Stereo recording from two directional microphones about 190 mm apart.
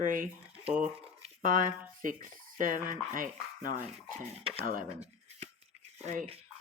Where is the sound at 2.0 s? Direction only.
45° right (ahead or behind).